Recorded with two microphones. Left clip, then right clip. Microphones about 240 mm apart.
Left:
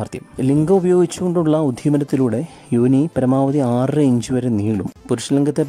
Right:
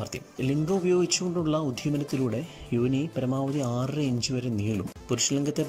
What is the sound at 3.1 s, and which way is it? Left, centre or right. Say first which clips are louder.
Speech: left 12 dB; left.